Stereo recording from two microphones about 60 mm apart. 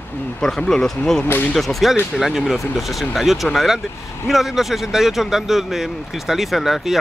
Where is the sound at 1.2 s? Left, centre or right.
Left.